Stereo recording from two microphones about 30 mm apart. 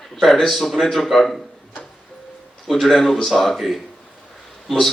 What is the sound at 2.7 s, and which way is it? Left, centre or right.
Speech, centre.